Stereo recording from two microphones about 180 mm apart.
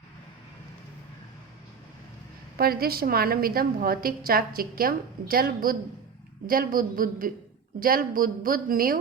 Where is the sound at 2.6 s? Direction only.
55° right (ahead or behind).